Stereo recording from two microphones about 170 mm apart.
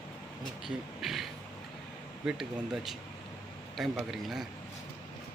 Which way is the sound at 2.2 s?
5° right (ahead or behind).